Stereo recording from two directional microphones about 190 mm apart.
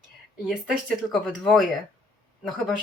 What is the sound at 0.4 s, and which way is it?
Speech, centre (ahead or behind).